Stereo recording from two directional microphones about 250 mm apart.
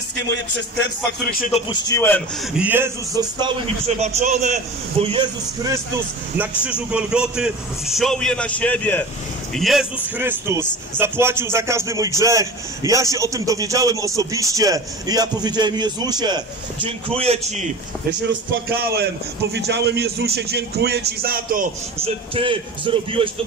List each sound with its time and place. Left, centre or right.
1.2 s speech: left
1.7 s a man's voice: centre
2.5 s a man's voice: centre
6.6 s a man's voice: centre; by 17.6 s right
18.8 s a man's voice: right
22.0 s a man's voice: right